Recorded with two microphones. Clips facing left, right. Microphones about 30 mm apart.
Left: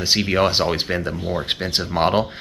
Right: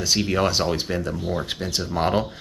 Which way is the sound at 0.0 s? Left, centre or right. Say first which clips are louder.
Left 3 dB; left.